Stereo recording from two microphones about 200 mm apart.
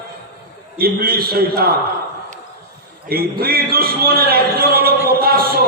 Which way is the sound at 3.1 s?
50° right (ahead or behind).